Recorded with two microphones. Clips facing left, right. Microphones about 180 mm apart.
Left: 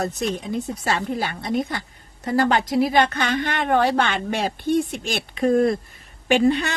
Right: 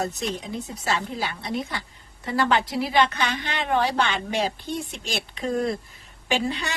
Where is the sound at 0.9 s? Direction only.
50° left (ahead or behind).